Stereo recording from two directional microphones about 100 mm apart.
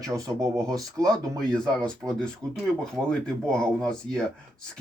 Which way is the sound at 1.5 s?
5° left (ahead or behind).